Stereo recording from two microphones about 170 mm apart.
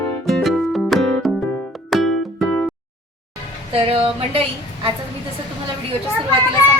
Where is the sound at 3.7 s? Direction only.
35° right (ahead or behind).